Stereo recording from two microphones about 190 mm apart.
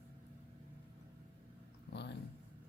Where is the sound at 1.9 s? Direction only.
65° left (ahead or behind).